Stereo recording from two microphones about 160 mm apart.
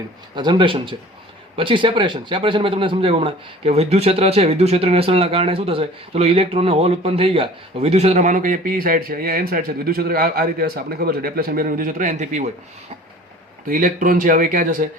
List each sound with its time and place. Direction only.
0.3 s speech: 30° right (ahead or behind); by 12.5 s 45° right (ahead or behind)
13.7 s speech: 55° right (ahead or behind)